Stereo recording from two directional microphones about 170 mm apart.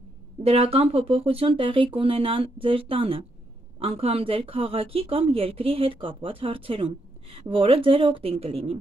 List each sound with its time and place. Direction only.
0.4 s speech: 35° right (ahead or behind)